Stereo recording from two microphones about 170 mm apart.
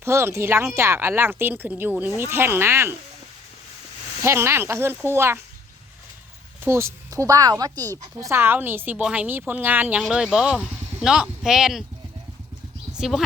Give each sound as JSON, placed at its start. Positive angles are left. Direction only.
{"t": 0.0, "sound": "a woman's voice", "side_deg": -15}
{"t": 4.2, "sound": "a woman's voice", "side_deg": -15}
{"t": 6.6, "sound": "a woman's voice", "side_deg": -15}
{"t": 13.0, "sound": "speech", "side_deg": 0}